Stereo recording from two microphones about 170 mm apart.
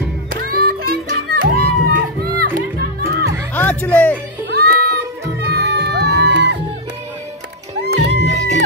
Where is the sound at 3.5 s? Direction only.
10° left (ahead or behind).